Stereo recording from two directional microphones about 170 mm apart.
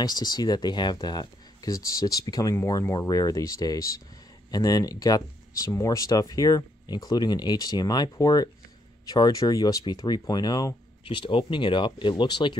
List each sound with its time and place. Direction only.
0.0 s speech: 25° left (ahead or behind)